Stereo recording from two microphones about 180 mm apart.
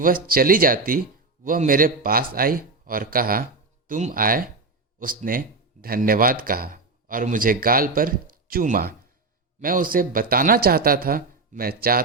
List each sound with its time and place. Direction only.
0.0 s speech: 55° right (ahead or behind)